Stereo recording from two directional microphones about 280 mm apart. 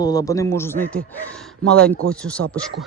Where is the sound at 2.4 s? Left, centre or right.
Right.